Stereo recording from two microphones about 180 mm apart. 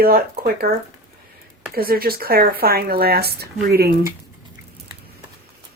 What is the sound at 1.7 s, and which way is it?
Speech, 55° right (ahead or behind).